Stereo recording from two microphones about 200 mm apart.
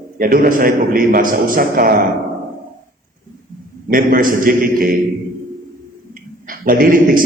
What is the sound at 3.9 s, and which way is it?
A man's voice, 45° right (ahead or behind).